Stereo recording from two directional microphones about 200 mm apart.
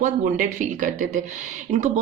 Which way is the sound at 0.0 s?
40° right (ahead or behind).